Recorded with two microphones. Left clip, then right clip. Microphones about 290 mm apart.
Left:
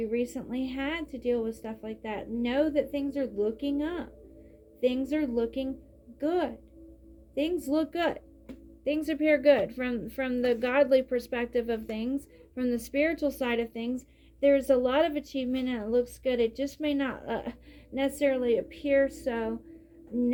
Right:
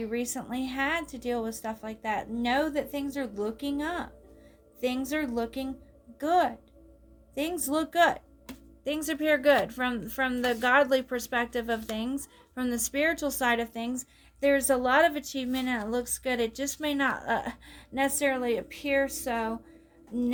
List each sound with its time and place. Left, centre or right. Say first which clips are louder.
0.0 s speech: left 2 dB; right